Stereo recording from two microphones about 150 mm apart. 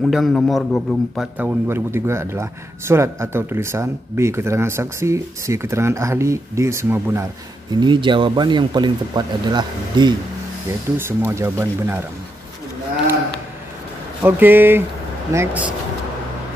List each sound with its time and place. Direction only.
0.0 s a man's voice: centre (ahead or behind)
1.1 s speech: 5° right (ahead or behind)
7.7 s speech: 30° right (ahead or behind)
11.0 s speech: 15° right (ahead or behind)
14.2 s speech: 15° right (ahead or behind)